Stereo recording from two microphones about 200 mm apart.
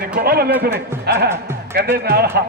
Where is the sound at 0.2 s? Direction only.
50° right (ahead or behind).